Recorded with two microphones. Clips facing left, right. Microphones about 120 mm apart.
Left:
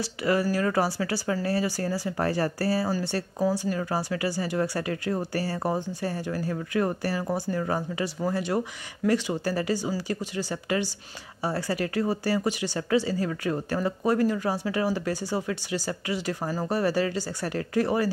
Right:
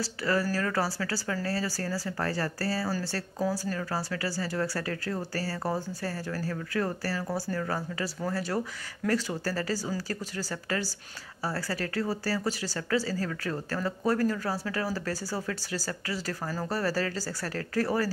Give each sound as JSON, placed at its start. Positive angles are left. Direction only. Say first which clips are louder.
{"t": 0.2, "sound": "speech", "louder": "left 4 dB", "side_deg": 15}